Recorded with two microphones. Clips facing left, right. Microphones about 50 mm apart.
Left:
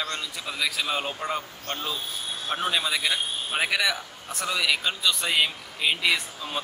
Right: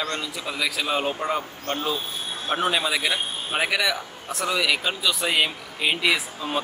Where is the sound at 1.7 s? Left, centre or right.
Right.